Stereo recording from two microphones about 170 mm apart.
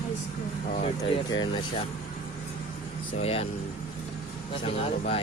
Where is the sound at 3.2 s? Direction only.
35° left (ahead or behind).